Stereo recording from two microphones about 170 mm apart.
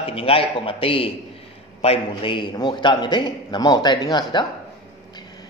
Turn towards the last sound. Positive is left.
turn(degrees=25)  # may be behind; listen again after turning